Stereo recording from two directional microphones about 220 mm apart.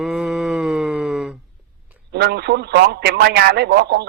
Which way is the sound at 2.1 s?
45° right (ahead or behind).